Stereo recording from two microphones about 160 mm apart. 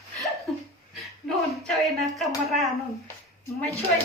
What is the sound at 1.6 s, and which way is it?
A woman's voice, centre (ahead or behind).